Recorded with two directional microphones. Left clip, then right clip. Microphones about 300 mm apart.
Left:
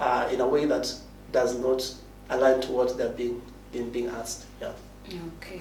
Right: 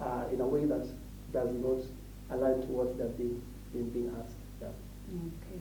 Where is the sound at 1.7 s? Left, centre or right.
Centre.